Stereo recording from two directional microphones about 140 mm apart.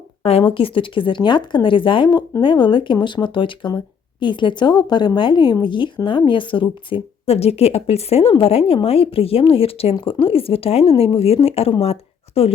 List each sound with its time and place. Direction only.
0.2 s speech: 40° left (ahead or behind)